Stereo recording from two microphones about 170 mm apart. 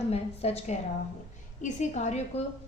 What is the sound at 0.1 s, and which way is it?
A woman's voice, 40° left (ahead or behind).